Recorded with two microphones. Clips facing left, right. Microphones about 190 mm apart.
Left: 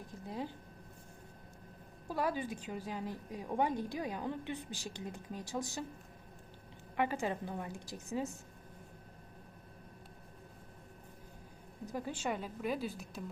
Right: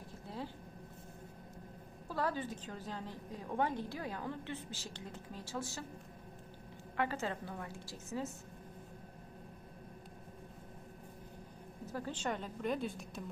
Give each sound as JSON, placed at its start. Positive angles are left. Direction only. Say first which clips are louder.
{"t": 0.3, "sound": "a sound", "louder": "left 3 dB", "side_deg": 15}
{"t": 2.0, "sound": "a woman's voice", "louder": "left 2 dB", "side_deg": 15}
{"t": 6.9, "sound": "a woman's voice", "louder": "left 3 dB", "side_deg": 15}
{"t": 11.9, "sound": "a woman's voice", "louder": "left 1 dB", "side_deg": 15}